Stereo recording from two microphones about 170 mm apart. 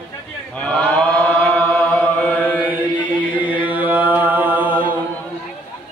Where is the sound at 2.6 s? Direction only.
10° right (ahead or behind).